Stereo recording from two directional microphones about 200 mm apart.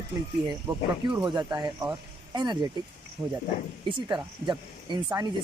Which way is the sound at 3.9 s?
25° right (ahead or behind).